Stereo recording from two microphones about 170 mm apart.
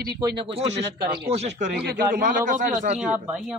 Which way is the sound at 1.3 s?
40° right (ahead or behind).